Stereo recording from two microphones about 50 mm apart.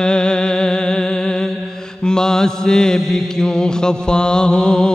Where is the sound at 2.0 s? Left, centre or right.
Centre.